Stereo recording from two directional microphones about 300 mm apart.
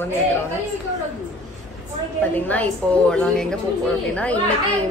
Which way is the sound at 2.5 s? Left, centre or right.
Centre.